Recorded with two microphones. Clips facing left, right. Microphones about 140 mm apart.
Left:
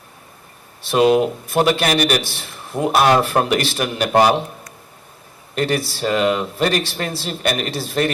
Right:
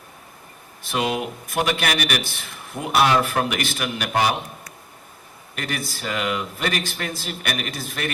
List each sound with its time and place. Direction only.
0.9 s speech: 30° left (ahead or behind)
5.5 s speech: 30° left (ahead or behind)